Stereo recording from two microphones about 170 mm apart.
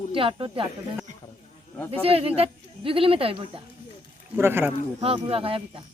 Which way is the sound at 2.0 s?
35° right (ahead or behind).